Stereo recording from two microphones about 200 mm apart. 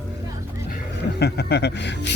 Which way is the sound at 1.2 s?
55° left (ahead or behind).